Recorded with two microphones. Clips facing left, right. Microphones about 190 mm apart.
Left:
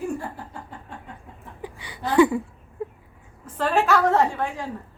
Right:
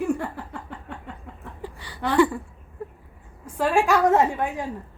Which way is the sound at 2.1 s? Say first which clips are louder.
Left 3 dB; 15° left (ahead or behind).